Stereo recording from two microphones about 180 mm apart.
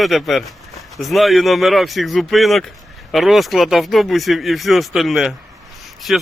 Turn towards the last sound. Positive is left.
turn(degrees=0)  # may be behind; listen again after turning